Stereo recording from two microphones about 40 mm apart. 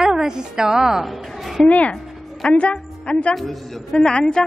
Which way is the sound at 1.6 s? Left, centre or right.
Left.